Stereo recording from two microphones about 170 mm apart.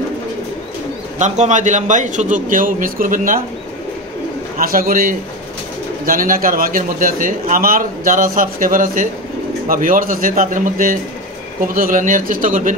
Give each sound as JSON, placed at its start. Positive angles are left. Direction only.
{"t": 1.2, "sound": "a man's voice", "side_deg": -45}
{"t": 4.6, "sound": "a man's voice", "side_deg": -60}